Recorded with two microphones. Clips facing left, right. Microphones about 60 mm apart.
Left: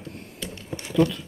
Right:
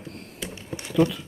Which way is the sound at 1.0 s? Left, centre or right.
Right.